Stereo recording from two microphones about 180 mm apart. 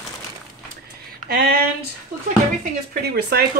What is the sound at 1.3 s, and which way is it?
Speech, 60° right (ahead or behind).